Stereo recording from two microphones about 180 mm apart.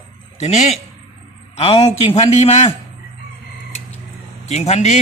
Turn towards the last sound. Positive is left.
turn(degrees=40)  # may be behind; listen again after turning